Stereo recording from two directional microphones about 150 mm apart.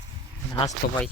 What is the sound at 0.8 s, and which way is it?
Speech, 90° left.